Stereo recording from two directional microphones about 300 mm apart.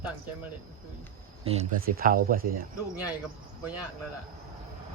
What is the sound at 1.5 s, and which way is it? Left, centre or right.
Speech, right.